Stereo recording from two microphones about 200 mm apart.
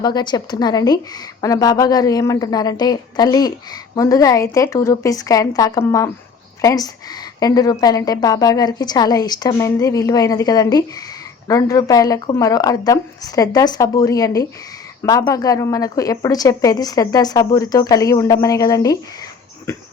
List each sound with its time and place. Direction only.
0.0 s a woman's voice: 20° left (ahead or behind)